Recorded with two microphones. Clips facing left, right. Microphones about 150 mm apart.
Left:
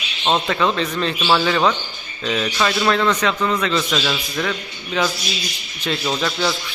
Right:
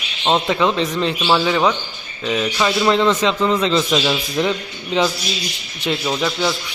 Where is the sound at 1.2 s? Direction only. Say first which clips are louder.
Even; 5° right (ahead or behind).